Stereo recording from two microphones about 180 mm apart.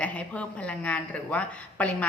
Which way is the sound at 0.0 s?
10° left (ahead or behind).